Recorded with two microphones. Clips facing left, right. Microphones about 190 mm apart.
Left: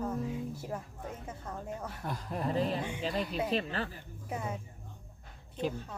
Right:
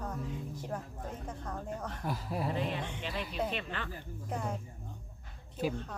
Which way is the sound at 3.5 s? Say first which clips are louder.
Left 6 dB; 35° left (ahead or behind).